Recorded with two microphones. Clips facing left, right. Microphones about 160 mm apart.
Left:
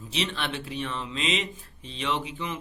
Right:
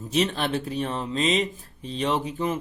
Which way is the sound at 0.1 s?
45° right (ahead or behind).